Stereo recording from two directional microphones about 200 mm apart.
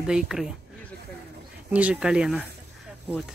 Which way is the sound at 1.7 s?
5° right (ahead or behind).